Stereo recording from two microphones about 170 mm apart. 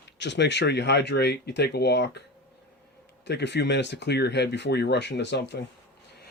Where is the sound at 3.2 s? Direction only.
90° left.